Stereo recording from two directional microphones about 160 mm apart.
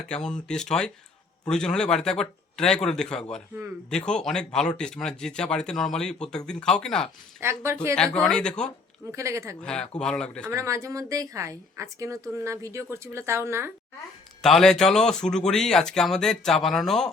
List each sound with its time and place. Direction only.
0.1 s speech: 5° left (ahead or behind)
7.4 s speech: 15° right (ahead or behind)
7.9 s speech: 5° left (ahead or behind)
9.1 s a woman's voice: 20° right (ahead or behind)
9.6 s speech: 5° left (ahead or behind)
10.5 s a woman's voice: 20° right (ahead or behind)
14.4 s speech: centre (ahead or behind)